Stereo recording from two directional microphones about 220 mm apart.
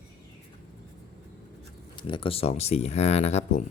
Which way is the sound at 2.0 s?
20° left (ahead or behind).